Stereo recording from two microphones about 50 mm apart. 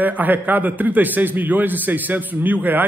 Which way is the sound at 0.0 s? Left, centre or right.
Right.